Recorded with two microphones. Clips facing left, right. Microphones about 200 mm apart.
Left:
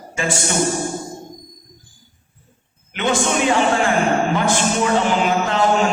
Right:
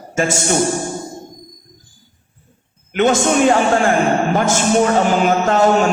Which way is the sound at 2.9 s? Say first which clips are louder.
Right 5 dB; 45° right (ahead or behind).